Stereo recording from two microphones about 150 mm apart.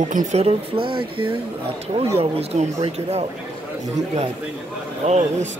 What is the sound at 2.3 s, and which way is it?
Speech, 45° right (ahead or behind).